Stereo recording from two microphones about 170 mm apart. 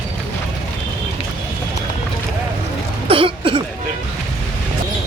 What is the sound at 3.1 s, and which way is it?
Throat clearing, 30° right (ahead or behind).